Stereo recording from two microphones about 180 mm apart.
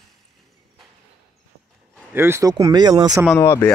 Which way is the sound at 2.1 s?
15° right (ahead or behind).